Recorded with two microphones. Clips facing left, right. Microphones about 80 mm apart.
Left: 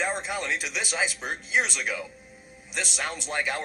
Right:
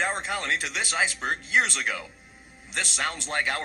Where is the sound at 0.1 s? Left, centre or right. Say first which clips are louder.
Right 1 dB; right.